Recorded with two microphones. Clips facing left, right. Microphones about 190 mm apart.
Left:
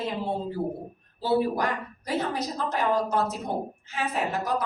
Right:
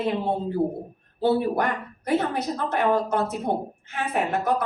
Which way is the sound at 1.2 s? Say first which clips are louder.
Right 3 dB; 60° right (ahead or behind).